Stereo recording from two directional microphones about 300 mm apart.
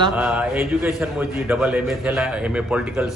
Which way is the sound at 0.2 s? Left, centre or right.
Centre.